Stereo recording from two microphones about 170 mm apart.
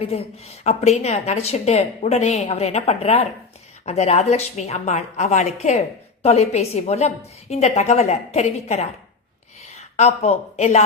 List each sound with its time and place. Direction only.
0.0 s a woman's voice: 35° left (ahead or behind)